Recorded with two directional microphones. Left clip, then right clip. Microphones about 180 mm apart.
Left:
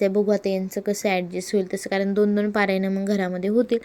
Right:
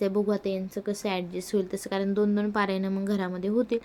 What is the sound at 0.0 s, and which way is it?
Speech, 25° left (ahead or behind).